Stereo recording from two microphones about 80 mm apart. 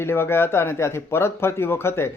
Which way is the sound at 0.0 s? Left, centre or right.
Left.